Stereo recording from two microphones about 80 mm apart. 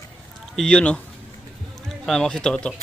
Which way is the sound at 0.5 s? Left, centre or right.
Centre.